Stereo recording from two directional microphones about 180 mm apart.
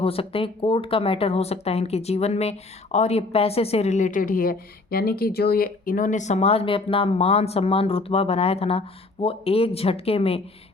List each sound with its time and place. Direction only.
0.0 s speech: 30° left (ahead or behind)